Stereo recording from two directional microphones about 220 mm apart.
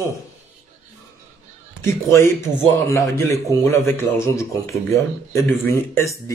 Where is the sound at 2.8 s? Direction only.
15° left (ahead or behind).